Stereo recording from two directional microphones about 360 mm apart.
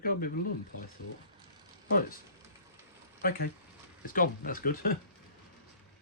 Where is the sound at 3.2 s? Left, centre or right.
Left.